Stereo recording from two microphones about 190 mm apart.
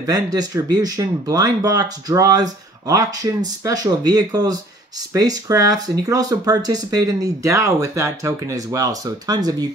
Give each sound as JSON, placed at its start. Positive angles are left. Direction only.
{"t": 0.0, "sound": "speech", "side_deg": -20}